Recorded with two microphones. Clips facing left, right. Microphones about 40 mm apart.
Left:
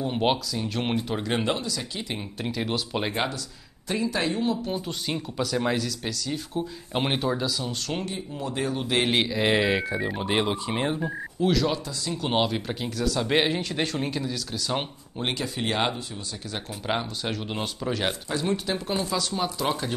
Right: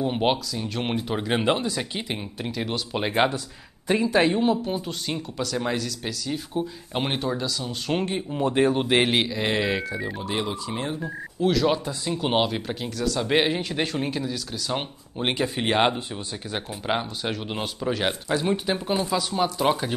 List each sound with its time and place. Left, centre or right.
0.0 s speech: centre; by 2.0 s right
2.1 s speech: centre
3.1 s speech: right
4.6 s speech: centre
8.0 s speech: right
9.0 s speech: centre
10.2 s speech: left
11.0 s speech: centre
11.6 s speech: right
12.4 s speech: centre
15.1 s speech: right
16.8 s speech: centre
18.3 s speech: centre